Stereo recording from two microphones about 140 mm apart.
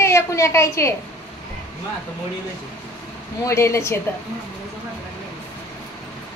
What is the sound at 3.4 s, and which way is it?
Speech, 20° left (ahead or behind).